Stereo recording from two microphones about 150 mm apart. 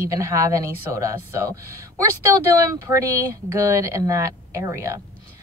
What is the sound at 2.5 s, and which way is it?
A woman's voice, 20° right (ahead or behind).